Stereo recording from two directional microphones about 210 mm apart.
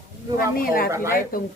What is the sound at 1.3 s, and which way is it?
Speech, 45° left (ahead or behind).